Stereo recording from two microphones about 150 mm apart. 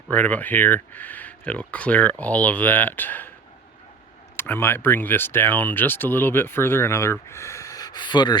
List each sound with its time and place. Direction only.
0.1 s speech: 10° left (ahead or behind)
4.4 s speech: 15° left (ahead or behind); by 8.4 s 30° left (ahead or behind)